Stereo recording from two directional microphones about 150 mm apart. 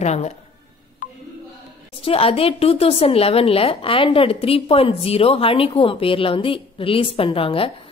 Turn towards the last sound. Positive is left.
turn(degrees=35)  # may be behind; listen again after turning